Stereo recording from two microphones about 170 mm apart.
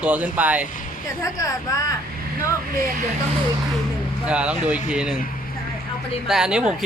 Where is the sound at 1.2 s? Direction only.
20° left (ahead or behind).